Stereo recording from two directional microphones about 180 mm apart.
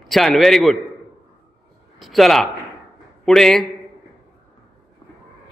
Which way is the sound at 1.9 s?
Centre (ahead or behind).